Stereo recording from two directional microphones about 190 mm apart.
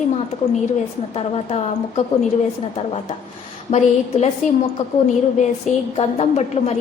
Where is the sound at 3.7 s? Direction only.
35° left (ahead or behind).